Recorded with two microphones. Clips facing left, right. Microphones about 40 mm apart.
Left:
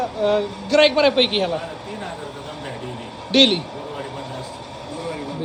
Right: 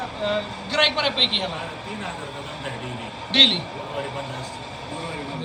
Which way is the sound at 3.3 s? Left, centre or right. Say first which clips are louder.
Left 2 dB; right.